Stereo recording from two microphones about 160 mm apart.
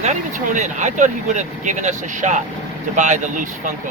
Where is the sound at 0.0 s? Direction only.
50° right (ahead or behind).